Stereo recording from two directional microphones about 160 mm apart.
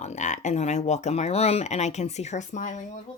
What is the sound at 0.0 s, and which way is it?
Speech, 50° left (ahead or behind).